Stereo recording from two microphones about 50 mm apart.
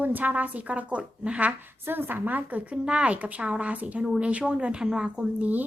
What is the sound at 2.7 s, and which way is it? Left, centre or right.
A woman's voice, right.